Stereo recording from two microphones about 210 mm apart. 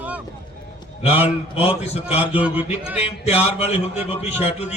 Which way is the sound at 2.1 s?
10° right (ahead or behind).